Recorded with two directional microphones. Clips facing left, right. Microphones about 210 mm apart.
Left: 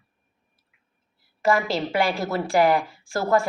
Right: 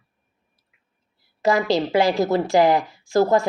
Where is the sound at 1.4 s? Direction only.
20° right (ahead or behind).